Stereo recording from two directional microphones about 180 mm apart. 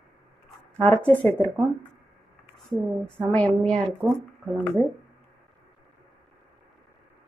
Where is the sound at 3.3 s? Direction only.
5° left (ahead or behind).